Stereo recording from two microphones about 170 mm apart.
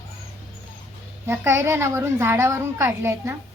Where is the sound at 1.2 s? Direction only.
15° right (ahead or behind).